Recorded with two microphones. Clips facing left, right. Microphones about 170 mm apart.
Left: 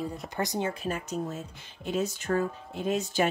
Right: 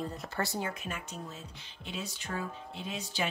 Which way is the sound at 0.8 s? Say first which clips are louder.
Left 9 dB; 40° left (ahead or behind).